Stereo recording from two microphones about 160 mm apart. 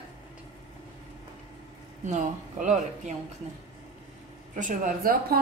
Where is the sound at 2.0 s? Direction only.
45° right (ahead or behind).